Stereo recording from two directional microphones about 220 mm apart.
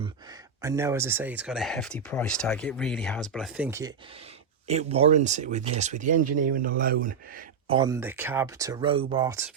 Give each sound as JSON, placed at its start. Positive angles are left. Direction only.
{"t": 0.6, "sound": "speech", "side_deg": -15}
{"t": 4.7, "sound": "speech", "side_deg": -30}
{"t": 7.7, "sound": "speech", "side_deg": -20}